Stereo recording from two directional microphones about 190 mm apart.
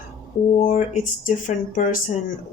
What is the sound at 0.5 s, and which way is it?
A woman's voice, 45° left (ahead or behind).